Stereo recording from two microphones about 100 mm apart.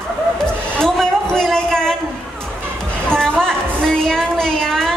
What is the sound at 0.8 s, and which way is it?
Music, 5° left (ahead or behind).